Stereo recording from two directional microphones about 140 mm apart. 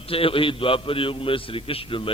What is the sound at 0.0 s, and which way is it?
A man's voice, 40° left (ahead or behind).